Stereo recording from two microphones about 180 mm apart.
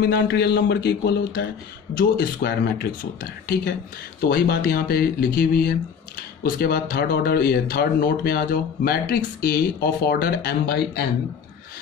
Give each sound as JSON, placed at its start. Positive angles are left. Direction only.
{"t": 0.0, "sound": "speech", "side_deg": 65}